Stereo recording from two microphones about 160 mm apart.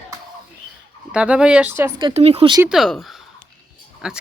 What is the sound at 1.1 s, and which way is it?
Speech, 5° right (ahead or behind).